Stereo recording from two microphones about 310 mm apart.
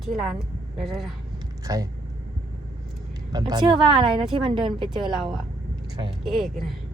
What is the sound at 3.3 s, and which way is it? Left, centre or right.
A woman's voice, centre.